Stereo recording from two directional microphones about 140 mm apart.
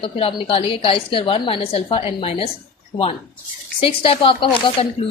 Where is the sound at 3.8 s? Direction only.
40° left (ahead or behind).